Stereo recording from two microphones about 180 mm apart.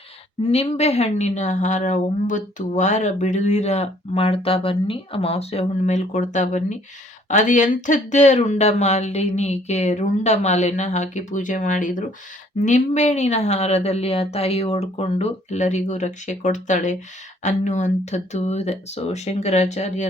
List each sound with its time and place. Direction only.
0.4 s a woman's voice: 35° left (ahead or behind)